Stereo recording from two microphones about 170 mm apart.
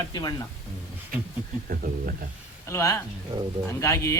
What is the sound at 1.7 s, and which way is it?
Speech, 60° right (ahead or behind).